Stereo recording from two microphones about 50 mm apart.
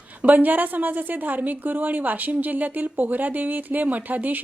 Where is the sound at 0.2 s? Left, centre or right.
Right.